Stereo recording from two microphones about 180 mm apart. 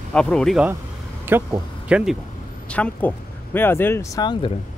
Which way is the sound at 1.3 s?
10° right (ahead or behind).